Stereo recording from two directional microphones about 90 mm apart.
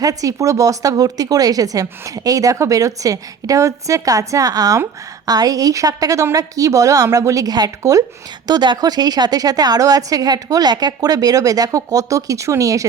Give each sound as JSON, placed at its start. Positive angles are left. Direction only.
{"t": 0.0, "sound": "a woman's voice", "side_deg": -40}
{"t": 8.4, "sound": "a woman's voice", "side_deg": -55}